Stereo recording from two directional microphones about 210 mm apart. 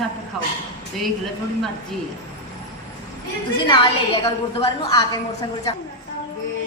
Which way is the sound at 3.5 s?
25° left (ahead or behind).